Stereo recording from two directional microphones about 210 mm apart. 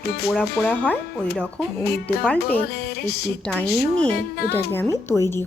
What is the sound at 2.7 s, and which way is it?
Music, 50° left (ahead or behind).